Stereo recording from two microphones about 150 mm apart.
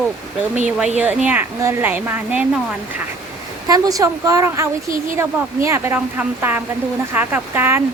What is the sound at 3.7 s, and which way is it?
Speech, 25° right (ahead or behind).